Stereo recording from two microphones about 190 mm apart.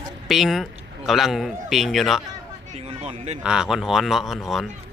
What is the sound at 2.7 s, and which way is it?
Speech, 30° right (ahead or behind).